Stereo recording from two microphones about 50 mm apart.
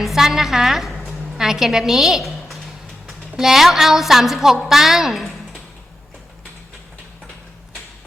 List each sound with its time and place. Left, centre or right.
0.0 s a woman's voice: centre